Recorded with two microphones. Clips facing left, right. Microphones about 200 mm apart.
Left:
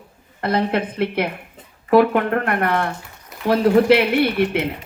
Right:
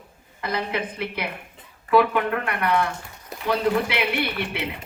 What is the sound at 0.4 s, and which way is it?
A woman's voice, 60° left (ahead or behind).